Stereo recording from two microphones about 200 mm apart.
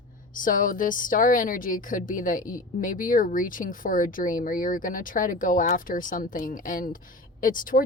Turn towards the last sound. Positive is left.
turn(degrees=45)  # may be behind; listen again after turning